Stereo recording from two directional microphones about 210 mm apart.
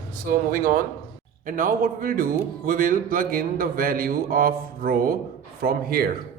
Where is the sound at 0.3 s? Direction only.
40° right (ahead or behind).